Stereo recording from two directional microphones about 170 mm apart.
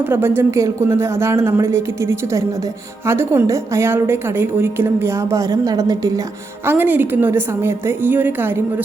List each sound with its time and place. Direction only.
0.0 s a woman's voice: 10° right (ahead or behind)